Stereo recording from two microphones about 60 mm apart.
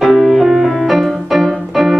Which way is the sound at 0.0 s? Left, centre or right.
Centre.